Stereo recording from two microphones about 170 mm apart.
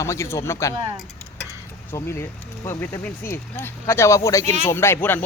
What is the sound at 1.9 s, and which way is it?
Speech, 15° left (ahead or behind).